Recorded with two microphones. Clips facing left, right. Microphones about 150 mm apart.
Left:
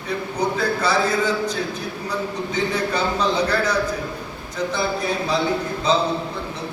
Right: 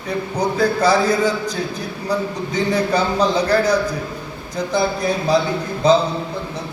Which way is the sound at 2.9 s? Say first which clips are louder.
Right 4 dB; 35° right (ahead or behind).